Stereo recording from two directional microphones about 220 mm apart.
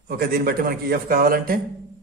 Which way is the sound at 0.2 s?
45° right (ahead or behind).